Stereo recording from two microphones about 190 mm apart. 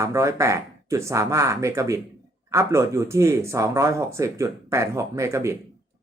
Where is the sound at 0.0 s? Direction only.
15° right (ahead or behind).